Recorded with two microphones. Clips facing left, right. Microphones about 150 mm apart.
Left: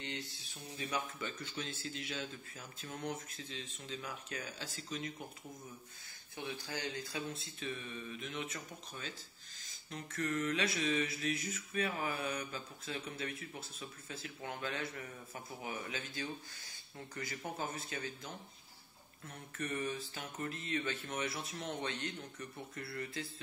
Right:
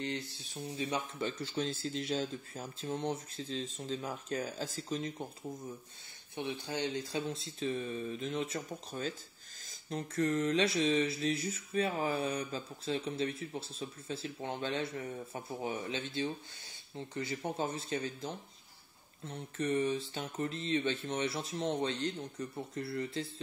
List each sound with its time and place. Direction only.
0.7 s mantra: 30° right (ahead or behind)
2.8 s mantra: 30° right (ahead or behind)
6.3 s mantra: 25° right (ahead or behind)
16.9 s speech: 25° right (ahead or behind)
20.3 s mantra: 30° right (ahead or behind)